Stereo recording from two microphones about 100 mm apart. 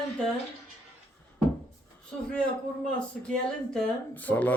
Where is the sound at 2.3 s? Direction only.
10° left (ahead or behind).